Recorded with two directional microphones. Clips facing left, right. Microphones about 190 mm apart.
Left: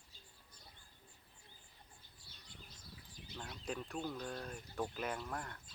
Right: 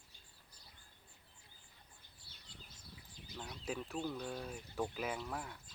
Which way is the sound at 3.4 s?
5° right (ahead or behind).